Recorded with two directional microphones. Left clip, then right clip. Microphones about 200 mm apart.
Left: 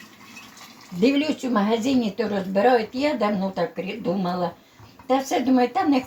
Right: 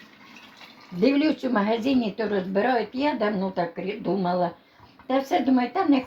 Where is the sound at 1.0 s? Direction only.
20° right (ahead or behind).